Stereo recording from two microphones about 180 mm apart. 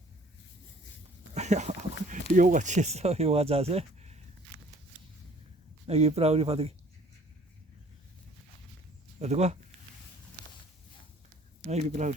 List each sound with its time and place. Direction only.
1.3 s a sound: 40° right (ahead or behind)
2.3 s speech: 45° right (ahead or behind)
5.9 s speech: 35° right (ahead or behind)
9.1 s speech: 40° right (ahead or behind)
11.6 s speech: 40° right (ahead or behind)